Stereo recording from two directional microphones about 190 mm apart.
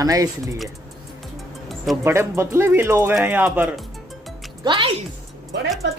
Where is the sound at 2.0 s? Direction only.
15° right (ahead or behind).